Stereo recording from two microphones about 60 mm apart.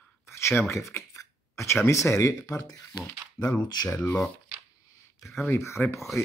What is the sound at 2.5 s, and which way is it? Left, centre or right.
Speech, left.